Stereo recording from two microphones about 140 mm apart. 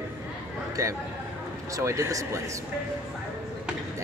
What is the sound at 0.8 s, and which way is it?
Speech, 25° right (ahead or behind).